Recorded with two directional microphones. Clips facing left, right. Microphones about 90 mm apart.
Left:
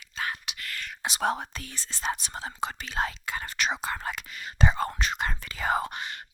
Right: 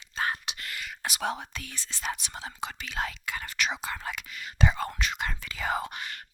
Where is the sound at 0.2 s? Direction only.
35° right (ahead or behind).